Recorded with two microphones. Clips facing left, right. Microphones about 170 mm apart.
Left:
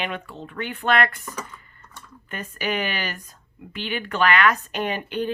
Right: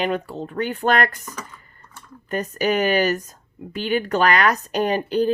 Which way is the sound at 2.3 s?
40° right (ahead or behind).